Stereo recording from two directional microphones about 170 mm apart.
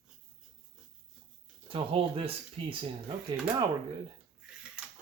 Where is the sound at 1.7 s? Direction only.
30° right (ahead or behind).